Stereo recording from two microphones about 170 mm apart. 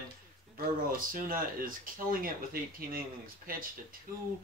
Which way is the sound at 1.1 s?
55° right (ahead or behind).